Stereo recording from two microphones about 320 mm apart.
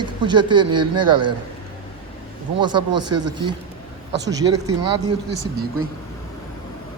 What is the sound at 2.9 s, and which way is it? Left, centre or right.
Speech, right.